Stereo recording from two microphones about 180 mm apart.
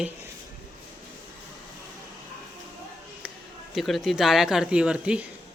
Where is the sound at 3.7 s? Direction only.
Centre (ahead or behind).